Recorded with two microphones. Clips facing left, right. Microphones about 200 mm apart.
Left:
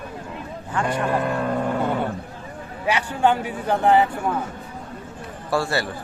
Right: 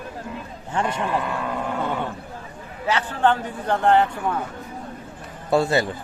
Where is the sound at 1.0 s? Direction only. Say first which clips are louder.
Left 3 dB; 45° left (ahead or behind).